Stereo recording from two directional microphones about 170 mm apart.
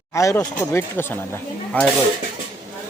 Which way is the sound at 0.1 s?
15° left (ahead or behind).